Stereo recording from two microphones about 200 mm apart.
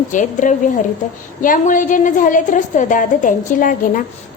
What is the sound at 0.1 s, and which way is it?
A woman's voice, 40° left (ahead or behind).